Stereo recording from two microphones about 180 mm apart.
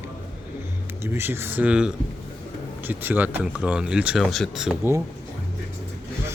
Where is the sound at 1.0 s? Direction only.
15° right (ahead or behind).